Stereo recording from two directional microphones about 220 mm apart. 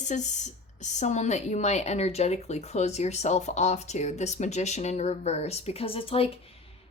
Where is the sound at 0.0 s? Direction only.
30° left (ahead or behind).